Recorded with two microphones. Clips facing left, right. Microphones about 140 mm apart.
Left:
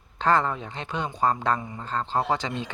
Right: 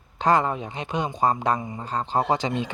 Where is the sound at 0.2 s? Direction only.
15° right (ahead or behind).